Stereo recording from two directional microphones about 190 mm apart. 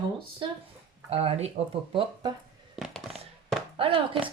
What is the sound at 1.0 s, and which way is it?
Speech, 30° right (ahead or behind).